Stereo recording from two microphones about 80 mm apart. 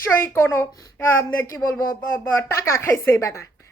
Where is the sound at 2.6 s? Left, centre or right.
Left.